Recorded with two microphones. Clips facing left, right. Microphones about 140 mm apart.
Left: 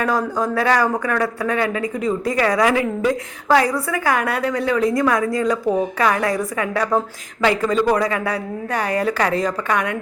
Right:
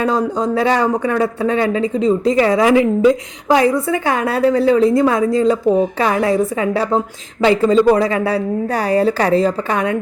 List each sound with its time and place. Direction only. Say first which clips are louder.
0.0 s speech: right 3 dB; 25° right (ahead or behind)